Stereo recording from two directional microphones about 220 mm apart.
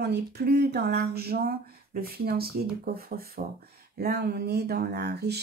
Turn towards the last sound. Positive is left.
turn(degrees=-50)  # may be behind; listen again after turning